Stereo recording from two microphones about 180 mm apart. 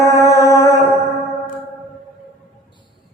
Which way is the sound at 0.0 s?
15° left (ahead or behind).